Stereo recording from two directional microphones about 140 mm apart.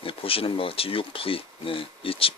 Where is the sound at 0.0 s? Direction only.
40° left (ahead or behind).